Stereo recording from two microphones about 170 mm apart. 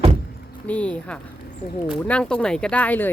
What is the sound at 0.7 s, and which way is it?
Speech, 10° left (ahead or behind).